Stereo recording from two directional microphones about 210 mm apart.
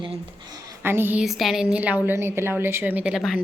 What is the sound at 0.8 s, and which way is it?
A woman's voice, 10° right (ahead or behind).